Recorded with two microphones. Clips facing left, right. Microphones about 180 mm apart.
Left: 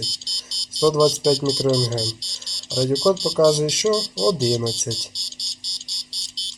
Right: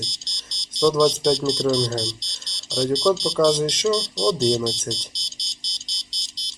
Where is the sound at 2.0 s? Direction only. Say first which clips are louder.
Left 1 dB; 20° right (ahead or behind).